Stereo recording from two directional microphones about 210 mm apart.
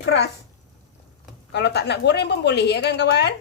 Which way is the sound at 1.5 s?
55° left (ahead or behind).